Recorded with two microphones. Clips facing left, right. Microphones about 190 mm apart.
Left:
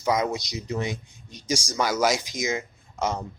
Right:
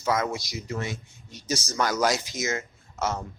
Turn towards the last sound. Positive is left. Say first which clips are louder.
# left 2 dB
turn(degrees=15)  # may be behind; listen again after turning